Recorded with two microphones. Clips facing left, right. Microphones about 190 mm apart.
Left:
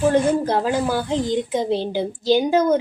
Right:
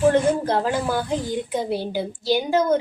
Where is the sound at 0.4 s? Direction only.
15° left (ahead or behind).